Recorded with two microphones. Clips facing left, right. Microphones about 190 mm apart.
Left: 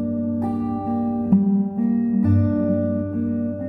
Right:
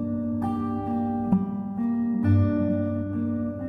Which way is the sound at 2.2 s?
10° left (ahead or behind).